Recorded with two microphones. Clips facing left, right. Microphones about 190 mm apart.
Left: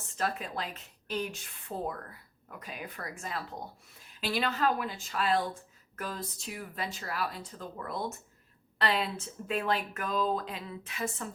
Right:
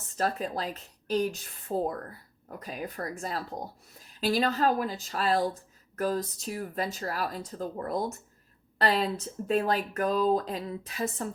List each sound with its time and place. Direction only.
0.2 s a woman's voice: 40° right (ahead or behind)